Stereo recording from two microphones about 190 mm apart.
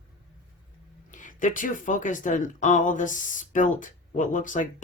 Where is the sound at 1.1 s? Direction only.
40° left (ahead or behind).